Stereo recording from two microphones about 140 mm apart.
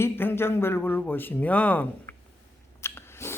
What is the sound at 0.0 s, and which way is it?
Speech, 15° left (ahead or behind).